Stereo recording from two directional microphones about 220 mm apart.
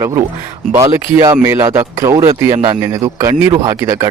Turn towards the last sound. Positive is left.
turn(degrees=-15)  # may be behind; listen again after turning